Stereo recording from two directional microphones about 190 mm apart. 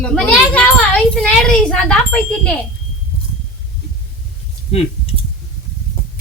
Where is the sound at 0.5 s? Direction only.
5° left (ahead or behind).